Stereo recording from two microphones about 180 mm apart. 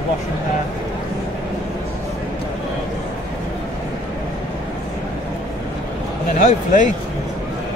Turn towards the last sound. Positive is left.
turn(degrees=45)  # may be behind; listen again after turning